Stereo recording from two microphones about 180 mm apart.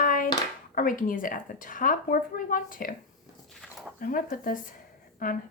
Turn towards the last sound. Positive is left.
turn(degrees=50)  # may be behind; listen again after turning